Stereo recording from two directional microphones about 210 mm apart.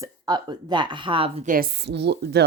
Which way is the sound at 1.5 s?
50° right (ahead or behind).